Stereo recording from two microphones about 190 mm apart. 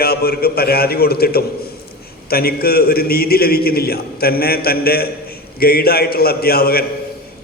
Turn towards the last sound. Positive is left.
turn(degrees=55)  # may be behind; listen again after turning